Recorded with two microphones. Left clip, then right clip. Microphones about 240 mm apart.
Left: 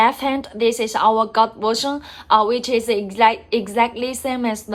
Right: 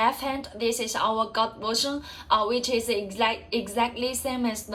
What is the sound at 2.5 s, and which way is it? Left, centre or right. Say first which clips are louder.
A woman's voice: left 7 dB; left.